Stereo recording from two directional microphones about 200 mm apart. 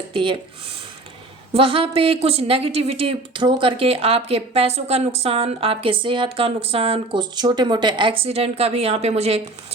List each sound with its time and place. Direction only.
0.1 s speech: 25° right (ahead or behind)
1.5 s a woman's voice: 30° right (ahead or behind)